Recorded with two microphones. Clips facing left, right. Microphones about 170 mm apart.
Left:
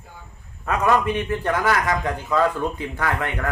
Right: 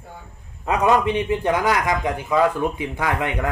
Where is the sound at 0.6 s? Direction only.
20° right (ahead or behind).